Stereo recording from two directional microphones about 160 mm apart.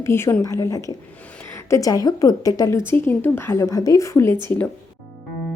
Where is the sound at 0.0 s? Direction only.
15° left (ahead or behind).